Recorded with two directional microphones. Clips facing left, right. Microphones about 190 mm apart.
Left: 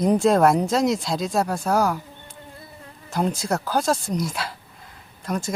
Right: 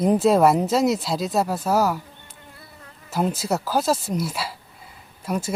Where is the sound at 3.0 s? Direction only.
5° right (ahead or behind).